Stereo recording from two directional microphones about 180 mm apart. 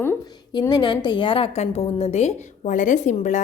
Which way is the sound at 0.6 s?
25° left (ahead or behind).